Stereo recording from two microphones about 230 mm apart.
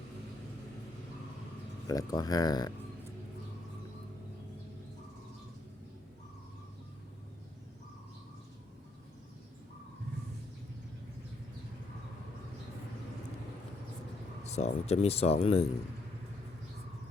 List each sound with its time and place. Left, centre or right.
1.9 s speech: centre
14.4 s speech: left